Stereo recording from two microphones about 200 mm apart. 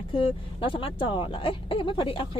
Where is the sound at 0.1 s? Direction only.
25° left (ahead or behind).